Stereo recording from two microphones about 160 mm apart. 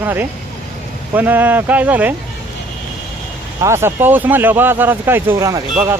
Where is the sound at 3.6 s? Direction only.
15° right (ahead or behind).